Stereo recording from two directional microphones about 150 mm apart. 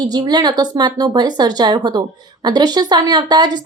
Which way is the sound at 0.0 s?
25° right (ahead or behind).